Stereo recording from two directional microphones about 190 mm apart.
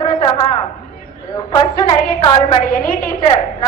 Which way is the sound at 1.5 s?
25° left (ahead or behind).